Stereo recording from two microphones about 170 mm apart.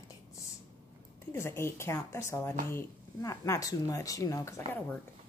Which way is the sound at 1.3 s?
15° left (ahead or behind).